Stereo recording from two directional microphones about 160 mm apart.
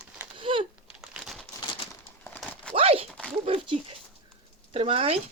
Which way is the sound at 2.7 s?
35° right (ahead or behind).